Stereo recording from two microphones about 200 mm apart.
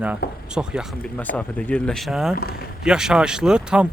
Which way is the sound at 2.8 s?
5° right (ahead or behind).